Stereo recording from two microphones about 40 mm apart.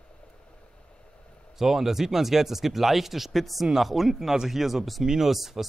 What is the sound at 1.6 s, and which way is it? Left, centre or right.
Speech, centre.